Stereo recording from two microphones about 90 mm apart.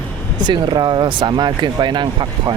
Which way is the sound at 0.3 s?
55° right (ahead or behind).